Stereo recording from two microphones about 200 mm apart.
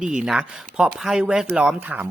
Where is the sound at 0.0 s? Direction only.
5° right (ahead or behind).